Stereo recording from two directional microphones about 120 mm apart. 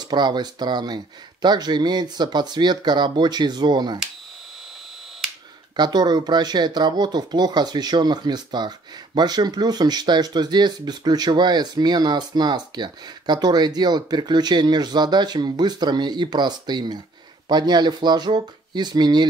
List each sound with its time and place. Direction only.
0.0 s speech: 35° right (ahead or behind)
5.8 s speech: 35° right (ahead or behind)